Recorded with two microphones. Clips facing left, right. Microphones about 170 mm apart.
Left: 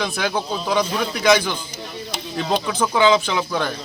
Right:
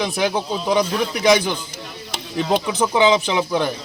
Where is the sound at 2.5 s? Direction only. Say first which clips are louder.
Right 2 dB; 20° right (ahead or behind).